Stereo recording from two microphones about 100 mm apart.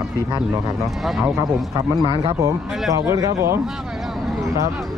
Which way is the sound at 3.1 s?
30° right (ahead or behind).